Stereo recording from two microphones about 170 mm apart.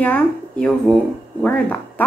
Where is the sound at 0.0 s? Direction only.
5° left (ahead or behind).